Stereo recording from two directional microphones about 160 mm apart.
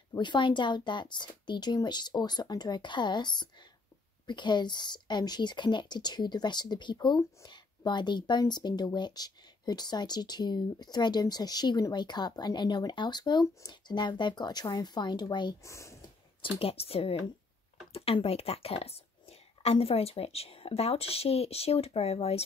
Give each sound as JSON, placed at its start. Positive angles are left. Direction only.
{"t": 0.1, "sound": "speech", "side_deg": 30}
{"t": 16.3, "sound": "speech", "side_deg": 35}